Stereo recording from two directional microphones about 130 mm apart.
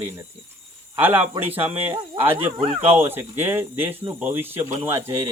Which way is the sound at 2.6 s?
50° right (ahead or behind).